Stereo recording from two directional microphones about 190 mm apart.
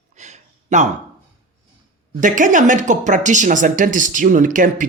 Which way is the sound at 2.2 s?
40° right (ahead or behind).